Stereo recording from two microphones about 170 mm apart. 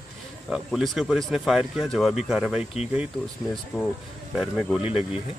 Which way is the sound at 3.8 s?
15° left (ahead or behind).